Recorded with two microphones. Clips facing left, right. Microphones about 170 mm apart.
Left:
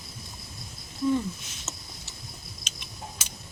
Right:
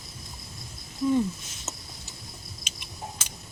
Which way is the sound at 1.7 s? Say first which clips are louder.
Right 2 dB; 15° right (ahead or behind).